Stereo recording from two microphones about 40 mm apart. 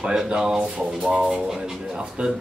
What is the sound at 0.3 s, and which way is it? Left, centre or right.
Speech, centre.